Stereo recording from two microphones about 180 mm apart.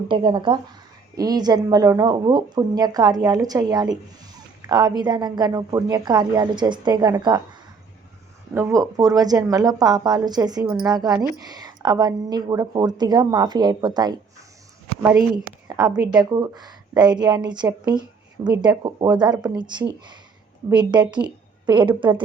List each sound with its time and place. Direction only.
0.1 s a woman's voice: 25° right (ahead or behind)
8.5 s a woman's voice: 15° right (ahead or behind)
15.6 s a woman's voice: 20° right (ahead or behind)